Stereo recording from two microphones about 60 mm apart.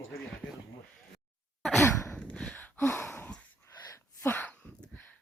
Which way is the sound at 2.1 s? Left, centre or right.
Centre.